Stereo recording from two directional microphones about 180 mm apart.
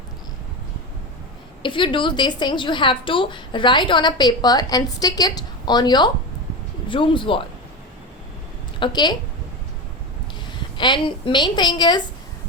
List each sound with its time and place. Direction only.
1.6 s a woman's voice: 30° left (ahead or behind)
8.8 s a woman's voice: 25° left (ahead or behind)
10.8 s a woman's voice: 25° left (ahead or behind)